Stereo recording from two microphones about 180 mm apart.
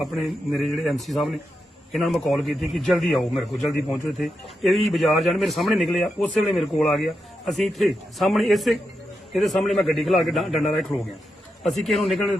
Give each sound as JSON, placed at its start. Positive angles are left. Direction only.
{"t": 0.0, "sound": "a man's voice", "side_deg": 0}